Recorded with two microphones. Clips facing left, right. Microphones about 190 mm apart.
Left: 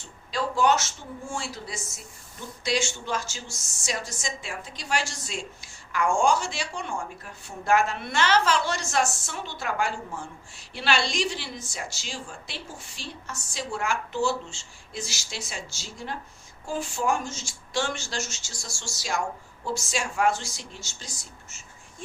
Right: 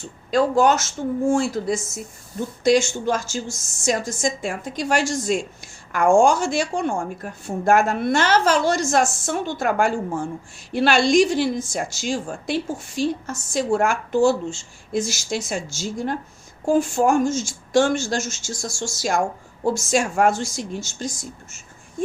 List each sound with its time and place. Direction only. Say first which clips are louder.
0.3 s a woman's voice: right 7 dB; 50° right (ahead or behind)